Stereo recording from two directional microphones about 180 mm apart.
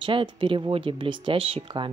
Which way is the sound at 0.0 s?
30° right (ahead or behind).